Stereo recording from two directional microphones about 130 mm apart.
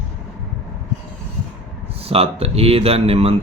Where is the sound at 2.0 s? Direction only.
50° right (ahead or behind).